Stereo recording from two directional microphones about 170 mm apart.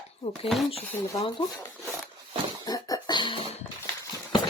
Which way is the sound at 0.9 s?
10° left (ahead or behind).